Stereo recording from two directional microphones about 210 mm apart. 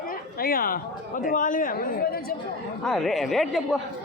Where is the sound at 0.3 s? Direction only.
45° left (ahead or behind).